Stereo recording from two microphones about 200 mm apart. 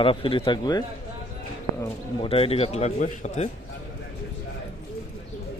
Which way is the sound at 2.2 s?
30° left (ahead or behind).